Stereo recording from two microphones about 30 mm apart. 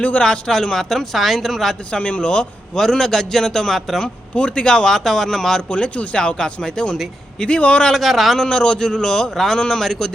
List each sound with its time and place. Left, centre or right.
0.2 s a man's voice: left
0.7 s speech: centre
1.1 s a woman's voice: centre
1.9 s speech: left
3.0 s speech: centre
4.4 s speech: left
4.9 s speech: centre
5.6 s speech: left
6.1 s a man's voice: left
7.3 s speech: left
7.9 s a woman's voice: centre
8.4 s a man's voice: left